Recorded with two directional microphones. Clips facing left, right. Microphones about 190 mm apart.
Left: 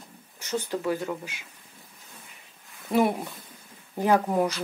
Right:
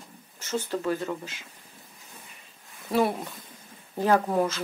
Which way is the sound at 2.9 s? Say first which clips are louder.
Left 1 dB; 15° left (ahead or behind).